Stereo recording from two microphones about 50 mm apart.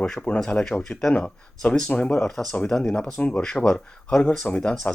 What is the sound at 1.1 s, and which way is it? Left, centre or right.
Speech, left.